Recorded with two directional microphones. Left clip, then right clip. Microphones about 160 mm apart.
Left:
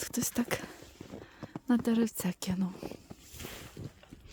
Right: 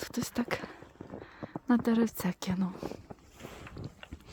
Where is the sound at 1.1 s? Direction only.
15° left (ahead or behind).